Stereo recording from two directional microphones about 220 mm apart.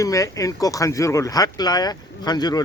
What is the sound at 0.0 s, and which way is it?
Speech, 15° left (ahead or behind).